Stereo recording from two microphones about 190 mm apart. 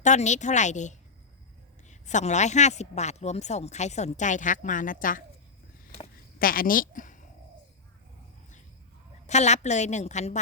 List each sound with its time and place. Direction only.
0.0 s a woman's voice: 40° left (ahead or behind)
6.4 s a woman's voice: 50° left (ahead or behind)
9.2 s a woman's voice: 35° left (ahead or behind)